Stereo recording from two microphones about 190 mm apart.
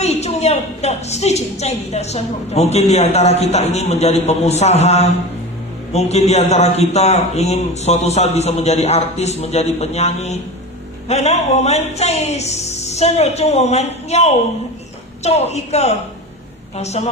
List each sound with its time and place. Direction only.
0.0 s a woman's voice: 35° left (ahead or behind)